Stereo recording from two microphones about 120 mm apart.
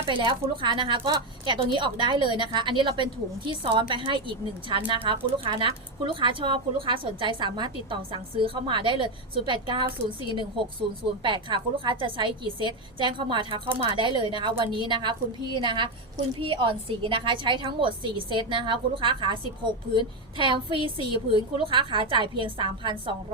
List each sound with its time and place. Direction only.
0.0 s a woman's voice: 40° right (ahead or behind)